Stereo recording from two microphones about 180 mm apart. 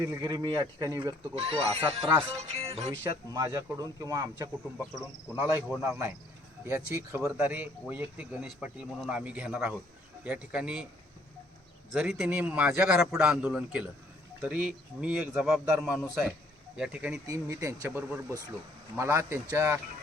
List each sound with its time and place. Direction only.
0.1 s speech: 20° right (ahead or behind)
1.4 s speech: 35° right (ahead or behind)
3.0 s a man's voice: 20° right (ahead or behind)
11.9 s a man's voice: 5° right (ahead or behind)
17.2 s speech: 15° right (ahead or behind)